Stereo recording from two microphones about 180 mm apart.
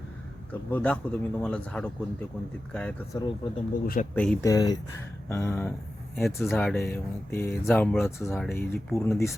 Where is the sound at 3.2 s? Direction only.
30° left (ahead or behind).